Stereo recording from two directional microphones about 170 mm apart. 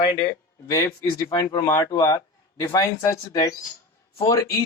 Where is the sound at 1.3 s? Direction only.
25° left (ahead or behind).